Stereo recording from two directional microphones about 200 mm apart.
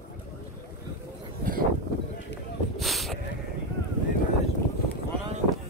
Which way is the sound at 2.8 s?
Centre (ahead or behind).